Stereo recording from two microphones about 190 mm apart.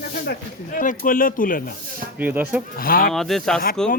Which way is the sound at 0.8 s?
45° left (ahead or behind).